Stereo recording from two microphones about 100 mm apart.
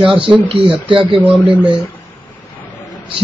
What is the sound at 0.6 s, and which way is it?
Speech, 55° right (ahead or behind).